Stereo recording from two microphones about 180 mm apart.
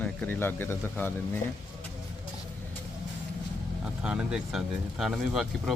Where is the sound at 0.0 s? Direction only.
10° left (ahead or behind).